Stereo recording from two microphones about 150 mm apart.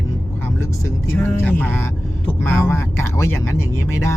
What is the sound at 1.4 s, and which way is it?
Speech, 10° left (ahead or behind).